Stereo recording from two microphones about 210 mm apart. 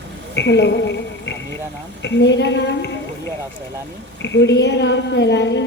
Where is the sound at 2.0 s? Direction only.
55° left (ahead or behind).